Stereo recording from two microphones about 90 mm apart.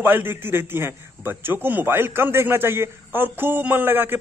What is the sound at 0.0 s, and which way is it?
A man's voice, 20° right (ahead or behind).